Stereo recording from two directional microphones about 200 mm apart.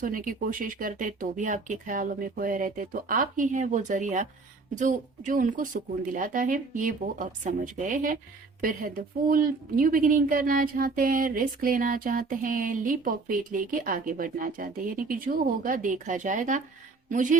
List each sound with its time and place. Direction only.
0.0 s speech: 45° right (ahead or behind)